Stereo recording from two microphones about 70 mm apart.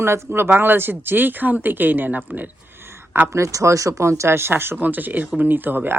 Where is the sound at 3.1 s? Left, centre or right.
Right.